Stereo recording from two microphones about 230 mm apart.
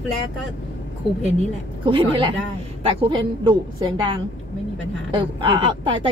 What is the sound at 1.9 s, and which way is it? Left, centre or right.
Speech, right.